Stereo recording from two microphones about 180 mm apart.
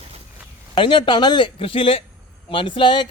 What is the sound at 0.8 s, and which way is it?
A man's voice, 30° left (ahead or behind).